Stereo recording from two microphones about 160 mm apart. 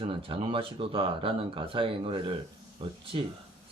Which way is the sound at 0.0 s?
35° right (ahead or behind).